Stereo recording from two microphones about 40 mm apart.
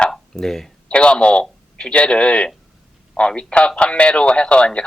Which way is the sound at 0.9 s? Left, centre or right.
Left.